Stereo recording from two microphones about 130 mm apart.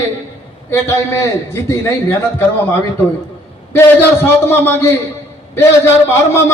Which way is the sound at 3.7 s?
15° left (ahead or behind).